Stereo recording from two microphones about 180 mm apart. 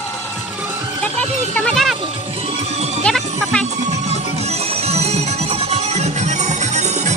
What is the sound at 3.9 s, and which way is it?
Music, 35° right (ahead or behind).